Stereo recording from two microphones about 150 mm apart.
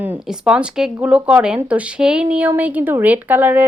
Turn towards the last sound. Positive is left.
turn(degrees=-10)  # may be behind; listen again after turning